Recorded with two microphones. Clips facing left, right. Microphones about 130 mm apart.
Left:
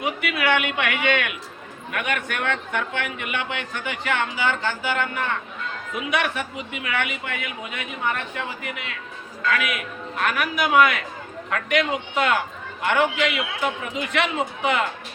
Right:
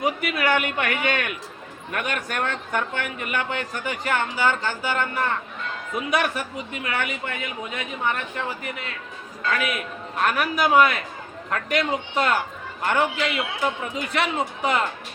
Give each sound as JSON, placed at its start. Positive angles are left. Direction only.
{"t": 0.0, "sound": "a man's voice", "side_deg": -40}